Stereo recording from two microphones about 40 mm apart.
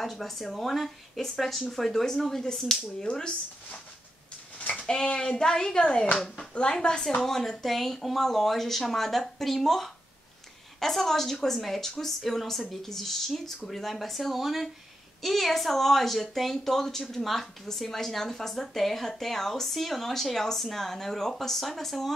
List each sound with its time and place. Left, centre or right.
0.0 s a woman's voice: centre
2.5 s speech: centre
4.6 s a sound: left
4.8 s a woman's voice: centre